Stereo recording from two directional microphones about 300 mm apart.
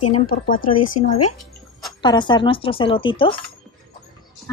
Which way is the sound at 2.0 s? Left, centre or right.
Centre.